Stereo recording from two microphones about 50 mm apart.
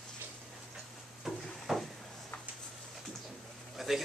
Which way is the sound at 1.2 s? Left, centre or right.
Centre.